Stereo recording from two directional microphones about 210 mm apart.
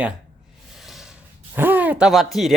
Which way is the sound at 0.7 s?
Centre (ahead or behind).